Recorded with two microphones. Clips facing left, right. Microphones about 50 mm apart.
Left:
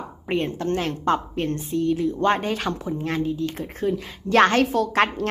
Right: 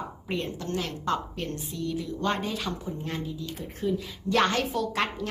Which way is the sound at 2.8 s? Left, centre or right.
Left.